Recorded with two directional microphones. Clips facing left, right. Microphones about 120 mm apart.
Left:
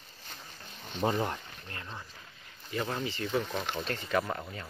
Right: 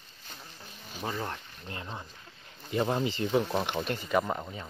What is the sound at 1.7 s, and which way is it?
Speech, 20° right (ahead or behind).